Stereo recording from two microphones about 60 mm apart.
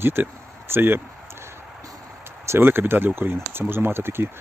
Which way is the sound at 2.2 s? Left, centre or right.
Right.